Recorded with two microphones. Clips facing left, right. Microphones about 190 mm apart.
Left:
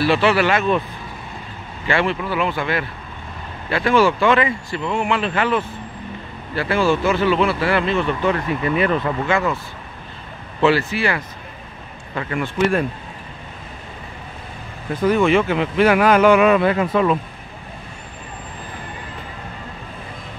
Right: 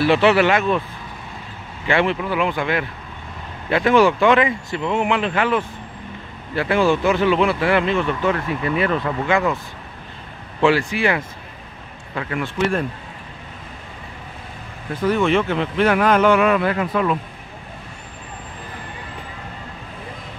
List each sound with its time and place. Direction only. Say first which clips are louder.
0.0 s speech: right 2 dB; 20° right (ahead or behind)
1.9 s speech: right 1 dB; 15° right (ahead or behind); by 9.1 s centre (ahead or behind)
9.2 s speech: right 1 dB; 15° right (ahead or behind)
10.6 s speech: even; 15° right (ahead or behind)
12.2 s speech: left 2 dB; centre (ahead or behind)
15.0 s speech: left 2 dB; 10° left (ahead or behind)